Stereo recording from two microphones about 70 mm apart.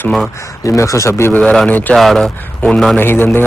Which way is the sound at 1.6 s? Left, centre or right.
Left.